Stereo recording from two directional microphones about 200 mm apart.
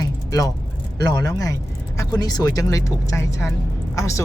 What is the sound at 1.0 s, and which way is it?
Speech, 20° left (ahead or behind).